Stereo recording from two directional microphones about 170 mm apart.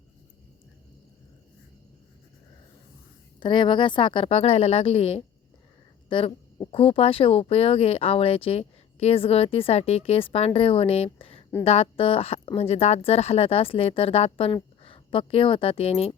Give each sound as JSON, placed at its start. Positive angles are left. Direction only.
{"t": 3.4, "sound": "speech", "side_deg": 30}